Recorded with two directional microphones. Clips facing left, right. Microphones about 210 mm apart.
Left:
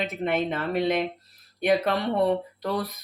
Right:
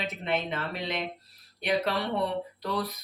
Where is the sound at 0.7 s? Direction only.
55° left (ahead or behind).